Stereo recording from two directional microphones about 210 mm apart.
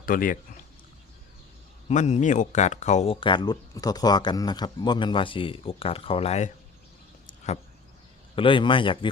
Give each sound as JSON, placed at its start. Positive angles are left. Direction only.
{"t": 0.0, "sound": "speech", "side_deg": 40}
{"t": 1.9, "sound": "speech", "side_deg": 35}
{"t": 7.3, "sound": "vehicle", "side_deg": 30}
{"t": 8.4, "sound": "speech", "side_deg": 25}